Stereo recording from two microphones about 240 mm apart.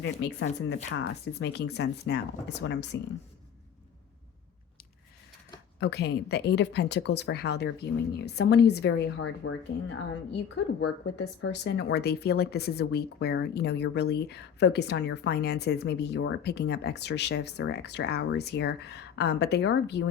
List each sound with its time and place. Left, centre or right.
0.0 s speech: left
5.8 s speech: left